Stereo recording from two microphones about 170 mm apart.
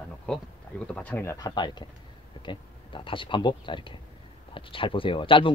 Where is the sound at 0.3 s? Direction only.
5° left (ahead or behind).